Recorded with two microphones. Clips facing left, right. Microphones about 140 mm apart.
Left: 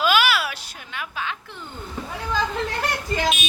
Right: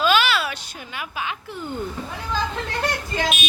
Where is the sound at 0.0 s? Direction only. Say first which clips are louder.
Right 1 dB; 10° left (ahead or behind); by 1.6 s 10° right (ahead or behind).